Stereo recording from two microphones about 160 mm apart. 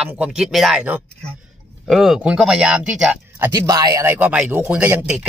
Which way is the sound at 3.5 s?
25° right (ahead or behind).